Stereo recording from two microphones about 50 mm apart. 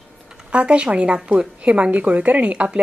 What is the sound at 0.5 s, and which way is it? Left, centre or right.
A woman's voice, right.